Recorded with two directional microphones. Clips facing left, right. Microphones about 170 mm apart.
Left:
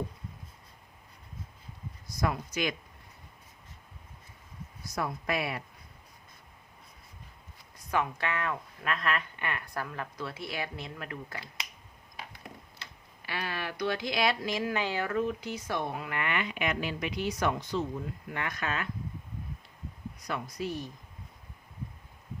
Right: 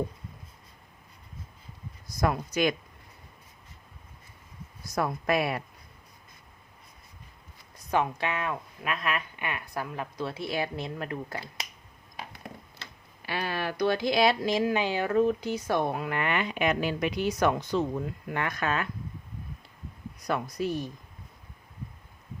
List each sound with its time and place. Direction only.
2.2 s speech: 50° right (ahead or behind)
4.9 s speech: 50° right (ahead or behind)
7.9 s speech: 20° right (ahead or behind)
13.2 s speech: 35° right (ahead or behind)
15.1 s speech: 35° right (ahead or behind)
17.7 s speech: 65° right (ahead or behind); by 18.9 s 50° right (ahead or behind)
20.2 s speech: 50° right (ahead or behind)